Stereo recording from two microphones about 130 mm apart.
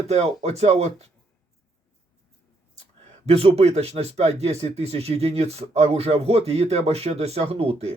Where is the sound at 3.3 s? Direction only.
50° right (ahead or behind).